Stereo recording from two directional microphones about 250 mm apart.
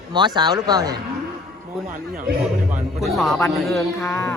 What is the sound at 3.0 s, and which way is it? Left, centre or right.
Speech, centre.